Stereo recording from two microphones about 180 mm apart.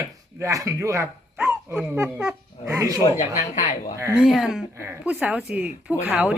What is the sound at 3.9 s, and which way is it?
Speech, 15° right (ahead or behind).